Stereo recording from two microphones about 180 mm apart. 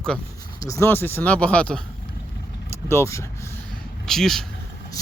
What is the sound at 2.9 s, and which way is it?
Speech, 15° left (ahead or behind).